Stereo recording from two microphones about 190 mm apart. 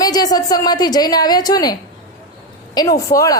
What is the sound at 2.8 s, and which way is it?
Speech, 20° left (ahead or behind).